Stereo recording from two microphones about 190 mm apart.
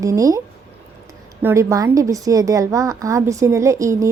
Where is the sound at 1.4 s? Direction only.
15° right (ahead or behind).